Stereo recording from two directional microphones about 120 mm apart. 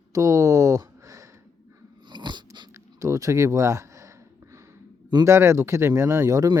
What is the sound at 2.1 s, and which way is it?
Biting, 40° right (ahead or behind).